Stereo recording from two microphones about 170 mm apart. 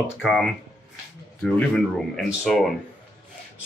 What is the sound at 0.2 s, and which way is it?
Speech, centre (ahead or behind).